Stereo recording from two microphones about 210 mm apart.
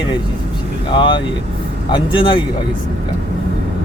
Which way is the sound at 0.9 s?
25° left (ahead or behind).